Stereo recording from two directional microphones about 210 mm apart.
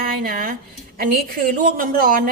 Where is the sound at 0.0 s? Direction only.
40° right (ahead or behind).